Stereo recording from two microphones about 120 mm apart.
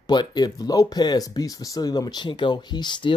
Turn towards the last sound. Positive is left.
turn(degrees=40)  # may be behind; listen again after turning